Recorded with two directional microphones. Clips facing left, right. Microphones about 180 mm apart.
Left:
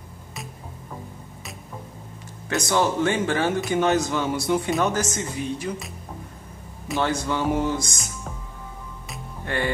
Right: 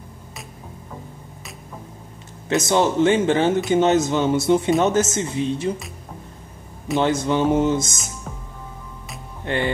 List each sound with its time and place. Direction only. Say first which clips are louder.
2.5 s speech: right 4 dB; 20° right (ahead or behind)
7.0 s speech: right 5 dB; 20° right (ahead or behind)
9.4 s speech: right 3 dB; 20° right (ahead or behind)